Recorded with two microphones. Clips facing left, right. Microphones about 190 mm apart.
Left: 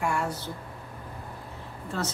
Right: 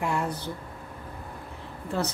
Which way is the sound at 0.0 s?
20° right (ahead or behind).